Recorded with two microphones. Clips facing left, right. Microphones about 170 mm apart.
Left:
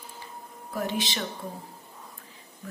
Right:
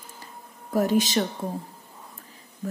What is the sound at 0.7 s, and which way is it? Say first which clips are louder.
Speech: right 9 dB; 40° right (ahead or behind).